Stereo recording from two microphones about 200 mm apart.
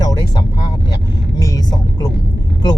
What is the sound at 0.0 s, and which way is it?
Vehicle, 20° left (ahead or behind).